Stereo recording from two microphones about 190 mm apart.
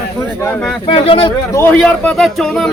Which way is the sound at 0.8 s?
30° left (ahead or behind).